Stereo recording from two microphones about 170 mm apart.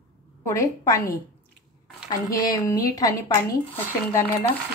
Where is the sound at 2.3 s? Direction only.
20° left (ahead or behind).